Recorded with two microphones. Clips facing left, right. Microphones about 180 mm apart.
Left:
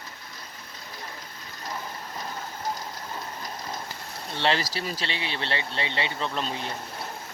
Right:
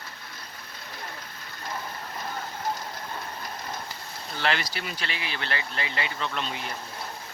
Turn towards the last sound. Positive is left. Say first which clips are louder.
# left 2 dB
turn(degrees=35)  # may be behind; listen again after turning